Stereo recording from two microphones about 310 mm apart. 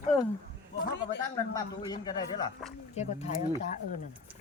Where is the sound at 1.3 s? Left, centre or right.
Centre.